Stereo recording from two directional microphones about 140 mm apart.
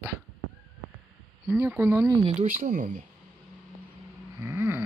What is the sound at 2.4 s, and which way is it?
Speech, 60° right (ahead or behind).